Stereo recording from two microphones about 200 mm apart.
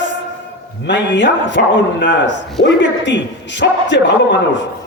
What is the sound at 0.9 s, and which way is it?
A man's voice, 65° left (ahead or behind).